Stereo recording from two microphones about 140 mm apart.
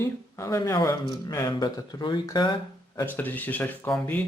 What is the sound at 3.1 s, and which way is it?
Speech, 10° left (ahead or behind).